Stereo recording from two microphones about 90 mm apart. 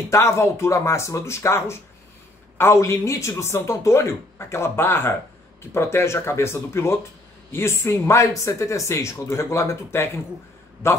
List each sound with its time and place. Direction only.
0.1 s speech: 30° left (ahead or behind)